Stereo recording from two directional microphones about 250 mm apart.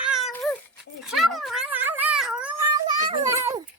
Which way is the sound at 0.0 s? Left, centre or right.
Centre.